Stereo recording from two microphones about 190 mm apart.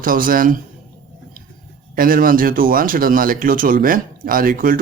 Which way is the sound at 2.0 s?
45° right (ahead or behind).